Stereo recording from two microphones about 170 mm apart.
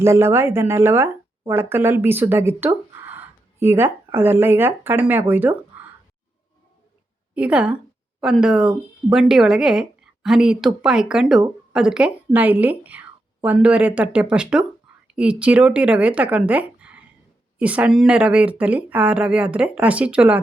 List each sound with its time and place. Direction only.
0.0 s speech: 15° right (ahead or behind)
7.3 s speech: 5° right (ahead or behind)